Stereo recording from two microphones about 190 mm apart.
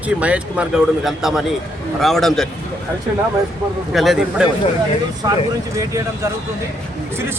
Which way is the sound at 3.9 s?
Centre (ahead or behind).